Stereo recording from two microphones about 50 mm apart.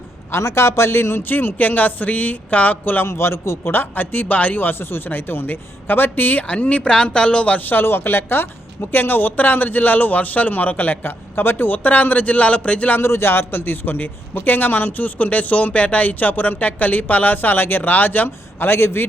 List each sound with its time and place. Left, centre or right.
0.3 s a man's voice: left
3.1 s a man's voice: left
3.6 s a man's voice: left
6.5 s speech: left
7.6 s a man's voice: left
13.0 s a man's voice: left